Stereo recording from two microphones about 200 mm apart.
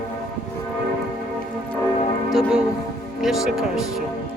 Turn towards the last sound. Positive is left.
turn(degrees=0)  # may be behind; listen again after turning